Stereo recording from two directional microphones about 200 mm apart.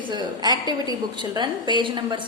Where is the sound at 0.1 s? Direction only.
20° right (ahead or behind).